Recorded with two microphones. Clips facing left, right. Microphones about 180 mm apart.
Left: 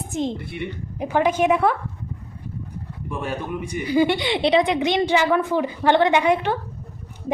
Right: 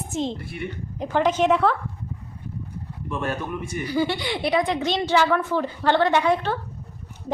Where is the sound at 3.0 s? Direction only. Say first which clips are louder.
Even; 15° left (ahead or behind).